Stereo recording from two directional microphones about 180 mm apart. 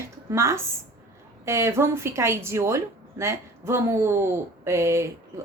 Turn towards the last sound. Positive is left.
turn(degrees=-15)  # may be behind; listen again after turning